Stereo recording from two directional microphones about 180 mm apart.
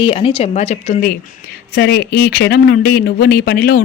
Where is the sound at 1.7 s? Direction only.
65° left (ahead or behind).